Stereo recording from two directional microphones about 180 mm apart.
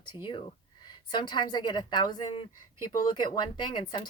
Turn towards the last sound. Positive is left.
turn(degrees=25)  # may be behind; listen again after turning